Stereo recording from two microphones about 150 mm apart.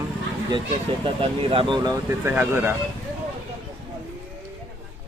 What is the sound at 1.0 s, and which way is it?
Speech, 40° right (ahead or behind).